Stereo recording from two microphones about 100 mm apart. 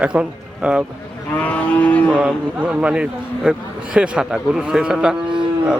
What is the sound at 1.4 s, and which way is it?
Cattle, 15° left (ahead or behind).